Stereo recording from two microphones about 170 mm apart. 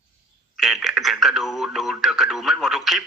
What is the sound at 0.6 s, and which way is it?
Speech, centre (ahead or behind).